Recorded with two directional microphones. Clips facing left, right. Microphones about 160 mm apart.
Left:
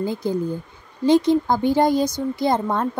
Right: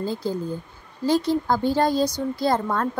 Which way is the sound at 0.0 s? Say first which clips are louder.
Left 3 dB; 15° left (ahead or behind).